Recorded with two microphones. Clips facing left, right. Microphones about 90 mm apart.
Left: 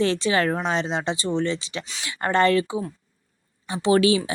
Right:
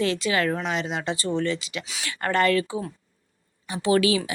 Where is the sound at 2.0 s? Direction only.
25° left (ahead or behind).